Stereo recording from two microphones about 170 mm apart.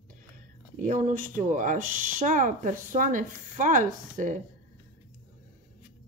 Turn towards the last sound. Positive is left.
turn(degrees=-50)  # may be behind; listen again after turning